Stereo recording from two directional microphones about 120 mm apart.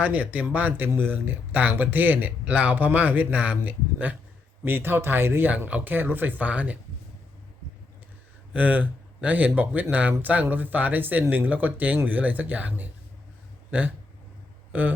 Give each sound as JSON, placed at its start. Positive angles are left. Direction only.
{"t": 0.0, "sound": "speech", "side_deg": -10}
{"t": 8.5, "sound": "speech", "side_deg": -15}